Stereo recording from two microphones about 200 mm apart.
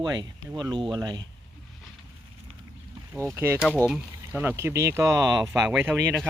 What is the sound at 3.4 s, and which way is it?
Speech, 10° right (ahead or behind).